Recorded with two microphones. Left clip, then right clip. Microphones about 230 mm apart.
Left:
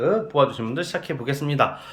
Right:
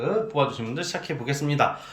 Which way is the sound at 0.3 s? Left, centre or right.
Centre.